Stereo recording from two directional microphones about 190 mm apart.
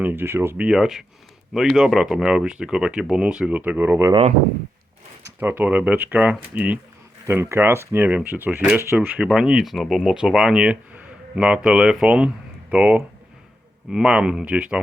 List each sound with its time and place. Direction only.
0.0 s speech: 10° right (ahead or behind)
4.1 s speech: 30° right (ahead or behind)
5.2 s speech: 10° right (ahead or behind)